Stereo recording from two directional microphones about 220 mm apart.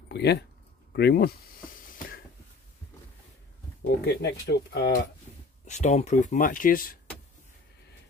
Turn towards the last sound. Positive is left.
turn(degrees=40)  # may be behind; listen again after turning